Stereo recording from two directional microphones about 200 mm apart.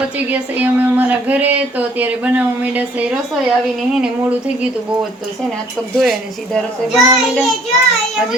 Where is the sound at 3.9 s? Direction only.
5° right (ahead or behind).